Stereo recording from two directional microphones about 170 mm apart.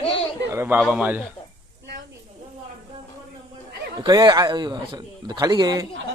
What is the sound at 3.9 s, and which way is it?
Speech, 25° right (ahead or behind).